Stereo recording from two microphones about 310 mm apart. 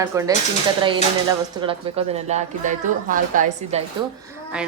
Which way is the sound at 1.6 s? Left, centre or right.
Centre.